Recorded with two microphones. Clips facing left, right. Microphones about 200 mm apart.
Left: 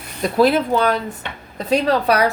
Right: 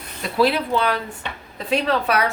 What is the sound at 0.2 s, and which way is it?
A woman's voice, 45° left (ahead or behind).